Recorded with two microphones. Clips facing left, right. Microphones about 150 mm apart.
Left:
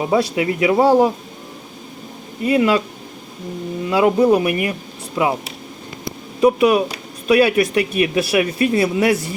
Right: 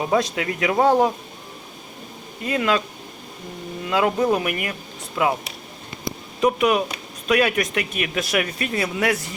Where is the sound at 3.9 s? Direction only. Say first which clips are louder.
Left 6 dB; 10° left (ahead or behind).